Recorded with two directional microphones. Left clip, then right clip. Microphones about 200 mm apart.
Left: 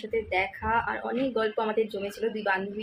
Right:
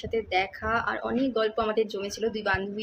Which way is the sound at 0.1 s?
25° right (ahead or behind).